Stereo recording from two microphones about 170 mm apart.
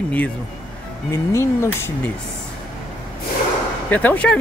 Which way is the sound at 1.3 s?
15° left (ahead or behind).